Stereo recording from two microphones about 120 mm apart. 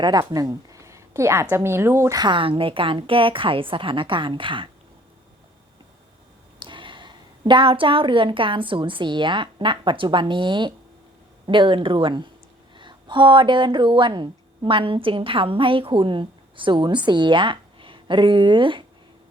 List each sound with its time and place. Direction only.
0.0 s a woman's voice: 35° right (ahead or behind)
6.6 s a woman's voice: 40° right (ahead or behind)